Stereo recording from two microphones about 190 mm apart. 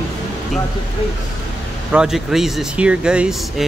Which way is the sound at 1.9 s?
5° right (ahead or behind).